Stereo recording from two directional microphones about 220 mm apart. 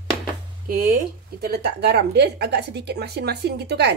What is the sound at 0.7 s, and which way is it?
A woman's voice, 40° right (ahead or behind).